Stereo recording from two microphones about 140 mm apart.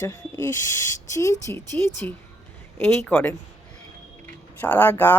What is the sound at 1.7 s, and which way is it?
A woman's voice, 15° left (ahead or behind).